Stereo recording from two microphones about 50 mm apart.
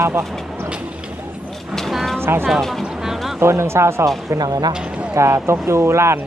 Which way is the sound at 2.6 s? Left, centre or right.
Centre.